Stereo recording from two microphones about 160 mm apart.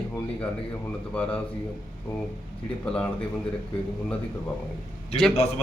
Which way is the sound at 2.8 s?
5° left (ahead or behind).